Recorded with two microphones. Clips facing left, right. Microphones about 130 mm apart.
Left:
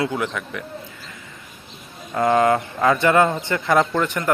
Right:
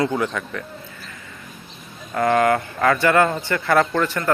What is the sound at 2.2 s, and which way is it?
A man's voice, 20° left (ahead or behind).